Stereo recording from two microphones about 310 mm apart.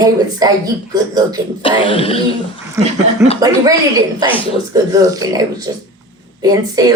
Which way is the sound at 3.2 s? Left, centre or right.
Centre.